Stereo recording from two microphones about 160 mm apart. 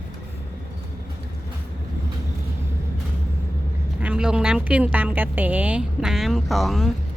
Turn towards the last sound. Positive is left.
turn(degrees=0)  # may be behind; listen again after turning